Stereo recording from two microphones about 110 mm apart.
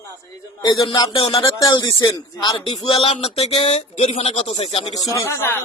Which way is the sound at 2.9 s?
65° left (ahead or behind).